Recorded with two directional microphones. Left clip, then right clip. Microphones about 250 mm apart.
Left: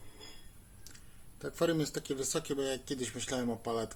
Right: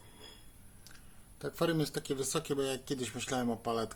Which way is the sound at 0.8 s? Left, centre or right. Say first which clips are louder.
Left 1 dB; centre.